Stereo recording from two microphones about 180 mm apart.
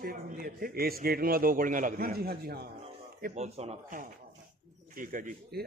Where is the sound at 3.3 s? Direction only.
35° right (ahead or behind); by 5.6 s 55° right (ahead or behind).